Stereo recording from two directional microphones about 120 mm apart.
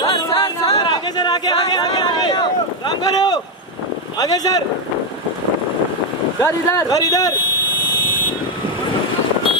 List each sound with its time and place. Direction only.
0.4 s a sound: 40° left (ahead or behind)
4.2 s speech: 35° left (ahead or behind)
6.4 s speech: 30° left (ahead or behind)